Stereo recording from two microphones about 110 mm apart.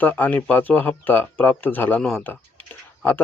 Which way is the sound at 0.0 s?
15° left (ahead or behind).